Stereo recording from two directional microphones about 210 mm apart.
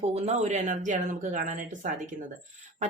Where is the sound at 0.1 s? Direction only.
30° right (ahead or behind).